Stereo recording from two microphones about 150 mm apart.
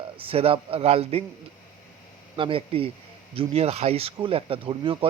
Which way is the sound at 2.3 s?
35° right (ahead or behind).